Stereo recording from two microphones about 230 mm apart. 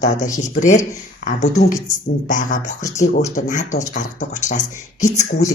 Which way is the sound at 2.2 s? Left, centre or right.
Left.